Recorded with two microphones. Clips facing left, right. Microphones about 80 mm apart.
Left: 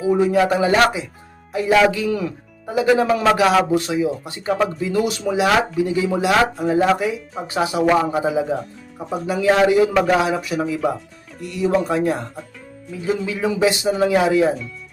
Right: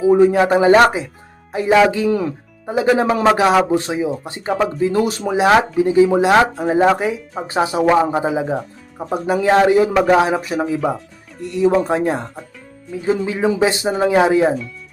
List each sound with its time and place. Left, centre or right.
0.1 s speech: right